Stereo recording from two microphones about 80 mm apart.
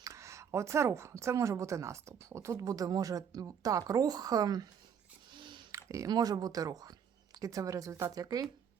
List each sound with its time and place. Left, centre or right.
0.0 s speech: right
5.3 s a sound: right
5.7 s speech: right